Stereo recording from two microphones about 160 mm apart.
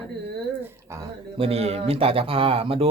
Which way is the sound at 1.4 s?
40° right (ahead or behind).